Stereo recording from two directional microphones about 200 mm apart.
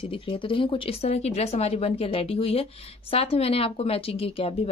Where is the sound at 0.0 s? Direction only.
25° left (ahead or behind).